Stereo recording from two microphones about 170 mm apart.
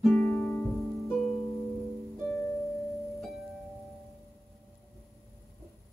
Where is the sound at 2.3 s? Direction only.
15° left (ahead or behind).